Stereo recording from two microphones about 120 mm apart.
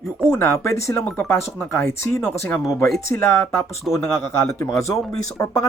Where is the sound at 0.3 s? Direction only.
20° left (ahead or behind).